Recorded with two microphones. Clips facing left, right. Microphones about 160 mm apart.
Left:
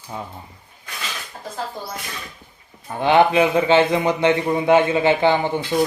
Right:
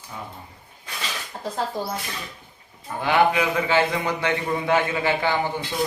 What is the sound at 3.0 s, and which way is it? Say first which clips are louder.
A man's voice: left 5 dB; 25° left (ahead or behind).